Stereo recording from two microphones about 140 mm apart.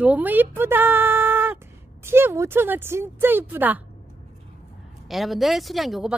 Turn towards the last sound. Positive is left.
turn(degrees=0)  # may be behind; listen again after turning